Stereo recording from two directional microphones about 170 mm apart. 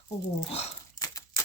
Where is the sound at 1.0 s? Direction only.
20° left (ahead or behind).